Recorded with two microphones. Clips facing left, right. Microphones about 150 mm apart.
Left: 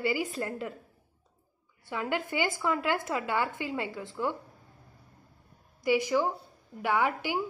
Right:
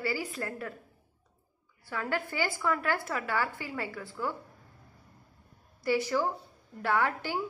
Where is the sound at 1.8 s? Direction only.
20° left (ahead or behind).